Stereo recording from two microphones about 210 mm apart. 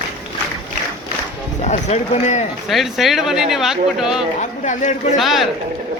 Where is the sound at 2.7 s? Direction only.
Centre (ahead or behind).